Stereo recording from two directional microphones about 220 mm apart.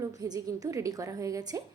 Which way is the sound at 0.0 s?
15° right (ahead or behind).